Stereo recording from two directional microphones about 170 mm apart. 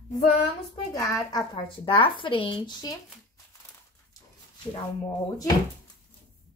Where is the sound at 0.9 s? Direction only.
20° left (ahead or behind).